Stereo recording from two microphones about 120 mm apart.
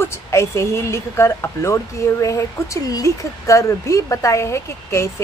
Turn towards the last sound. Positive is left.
turn(degrees=25)  # may be behind; listen again after turning